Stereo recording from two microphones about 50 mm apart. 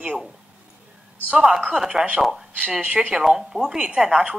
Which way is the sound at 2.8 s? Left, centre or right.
Right.